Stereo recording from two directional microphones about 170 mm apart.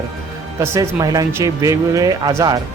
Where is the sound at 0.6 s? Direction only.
15° right (ahead or behind).